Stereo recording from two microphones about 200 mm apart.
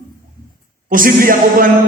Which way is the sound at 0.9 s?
45° right (ahead or behind).